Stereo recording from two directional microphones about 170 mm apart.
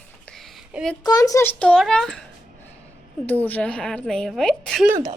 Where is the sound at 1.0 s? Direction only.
20° left (ahead or behind); by 2.2 s centre (ahead or behind).